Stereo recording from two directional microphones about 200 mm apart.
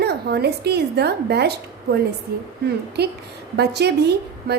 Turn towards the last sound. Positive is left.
turn(degrees=-55)  # may be behind; listen again after turning